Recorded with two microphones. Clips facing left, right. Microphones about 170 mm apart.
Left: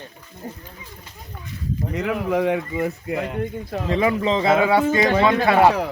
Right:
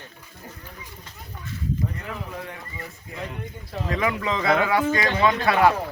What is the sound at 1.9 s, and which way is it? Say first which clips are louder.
Speech: left 13 dB; 90° left.